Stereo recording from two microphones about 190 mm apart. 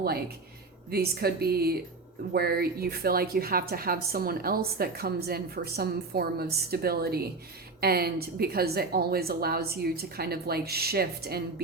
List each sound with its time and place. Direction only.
0.9 s a woman's voice: 55° right (ahead or behind)